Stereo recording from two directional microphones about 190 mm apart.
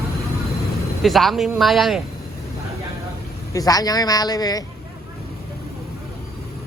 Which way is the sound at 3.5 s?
20° left (ahead or behind).